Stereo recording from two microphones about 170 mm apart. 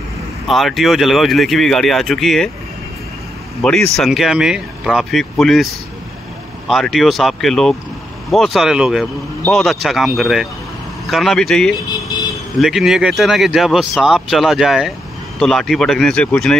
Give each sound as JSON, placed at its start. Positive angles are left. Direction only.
{"t": 0.5, "sound": "speech", "side_deg": 0}
{"t": 3.6, "sound": "speech", "side_deg": 5}
{"t": 6.7, "sound": "speech", "side_deg": 0}
{"t": 11.9, "sound": "vehicle", "side_deg": 20}
{"t": 12.5, "sound": "speech", "side_deg": 0}